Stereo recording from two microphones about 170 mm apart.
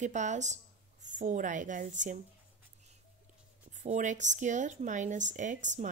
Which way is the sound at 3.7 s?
45° right (ahead or behind).